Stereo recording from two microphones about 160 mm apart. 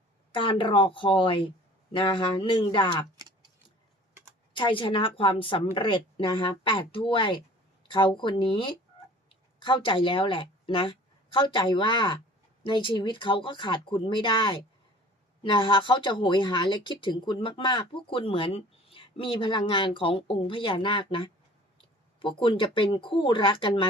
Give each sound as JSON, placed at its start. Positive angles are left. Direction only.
{"t": 0.3, "sound": "speech", "side_deg": 30}
{"t": 4.5, "sound": "a woman's voice", "side_deg": 30}